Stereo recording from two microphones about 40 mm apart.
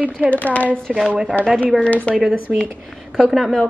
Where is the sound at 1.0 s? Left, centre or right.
Centre.